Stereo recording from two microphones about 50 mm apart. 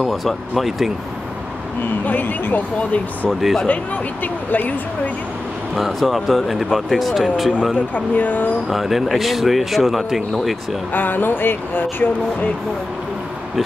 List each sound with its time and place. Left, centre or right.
0.0 s speech: centre
2.0 s speech: left
3.3 s speech: centre
4.2 s speech: left
5.8 s speech: centre
7.9 s speech: left
8.6 s speech: centre
10.9 s speech: left